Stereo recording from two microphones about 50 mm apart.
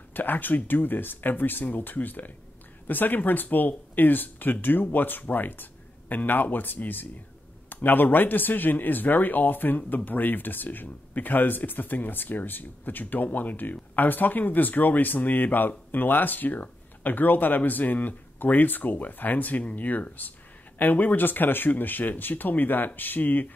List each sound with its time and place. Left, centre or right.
0.1 s a man's voice: left